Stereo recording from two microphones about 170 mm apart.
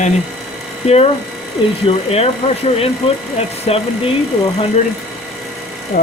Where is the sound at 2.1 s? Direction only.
35° left (ahead or behind).